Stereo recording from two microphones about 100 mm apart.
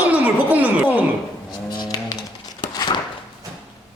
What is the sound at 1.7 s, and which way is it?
Livestock, 40° left (ahead or behind).